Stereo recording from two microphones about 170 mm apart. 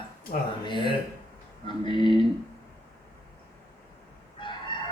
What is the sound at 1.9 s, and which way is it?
Speech, 25° left (ahead or behind).